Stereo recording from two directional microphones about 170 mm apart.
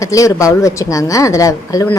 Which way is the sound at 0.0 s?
20° left (ahead or behind).